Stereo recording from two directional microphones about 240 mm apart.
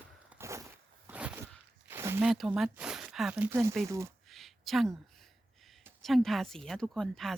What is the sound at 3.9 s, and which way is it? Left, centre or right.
Speech, centre.